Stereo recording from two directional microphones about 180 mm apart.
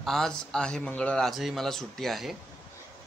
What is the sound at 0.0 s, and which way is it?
A man's voice, centre (ahead or behind).